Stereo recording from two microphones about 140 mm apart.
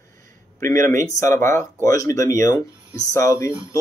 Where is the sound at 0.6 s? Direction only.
20° left (ahead or behind).